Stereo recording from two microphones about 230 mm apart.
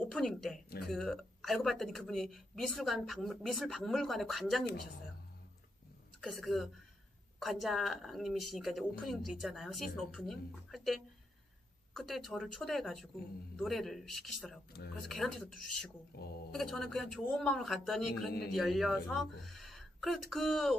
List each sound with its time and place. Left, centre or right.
0.0 s a woman's voice: centre
6.2 s a woman's voice: centre
16.1 s speech: left
16.5 s a woman's voice: centre